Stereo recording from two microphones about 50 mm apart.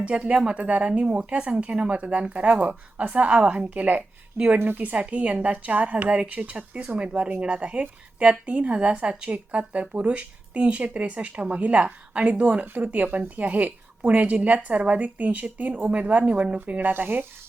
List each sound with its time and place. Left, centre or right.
0.0 s speech: right
4.4 s a woman's voice: right